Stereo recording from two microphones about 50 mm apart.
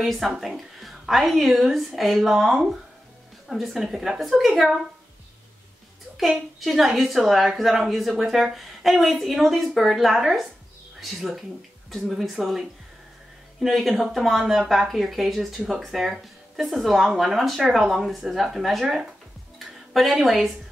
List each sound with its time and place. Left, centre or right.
0.0 s a woman's voice: centre
6.1 s a woman's voice: centre
13.6 s a woman's voice: centre